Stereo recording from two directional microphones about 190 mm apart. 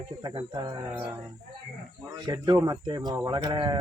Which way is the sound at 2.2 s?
20° right (ahead or behind).